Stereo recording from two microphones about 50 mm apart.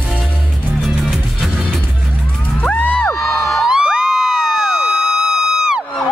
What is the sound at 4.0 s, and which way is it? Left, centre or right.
Music, centre.